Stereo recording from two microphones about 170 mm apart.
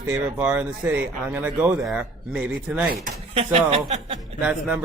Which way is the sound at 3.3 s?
35° right (ahead or behind).